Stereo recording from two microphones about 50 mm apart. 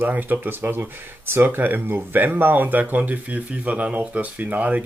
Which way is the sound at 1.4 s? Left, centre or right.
Right.